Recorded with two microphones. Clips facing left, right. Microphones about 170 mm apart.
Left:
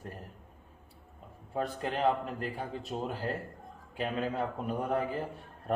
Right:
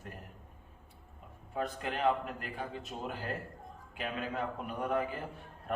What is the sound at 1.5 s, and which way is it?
A man's voice, 35° left (ahead or behind).